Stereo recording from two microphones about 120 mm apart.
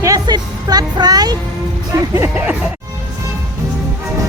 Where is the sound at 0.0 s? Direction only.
30° right (ahead or behind).